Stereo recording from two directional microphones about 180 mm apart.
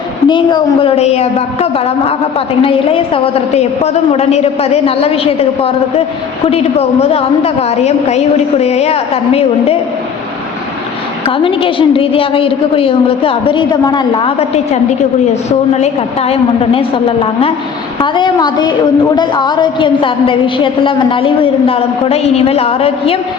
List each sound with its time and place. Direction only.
0.3 s a woman's voice: 25° left (ahead or behind)
2.6 s a woman's voice: 30° left (ahead or behind)
11.3 s a woman's voice: 30° left (ahead or behind)